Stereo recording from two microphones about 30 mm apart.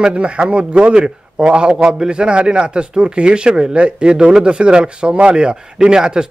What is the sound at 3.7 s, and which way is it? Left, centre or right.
A man's voice, right.